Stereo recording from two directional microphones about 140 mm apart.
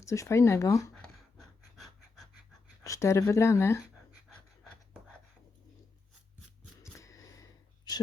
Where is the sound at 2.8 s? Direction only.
20° left (ahead or behind).